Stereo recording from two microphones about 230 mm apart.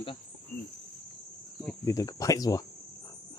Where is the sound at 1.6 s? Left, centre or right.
Centre.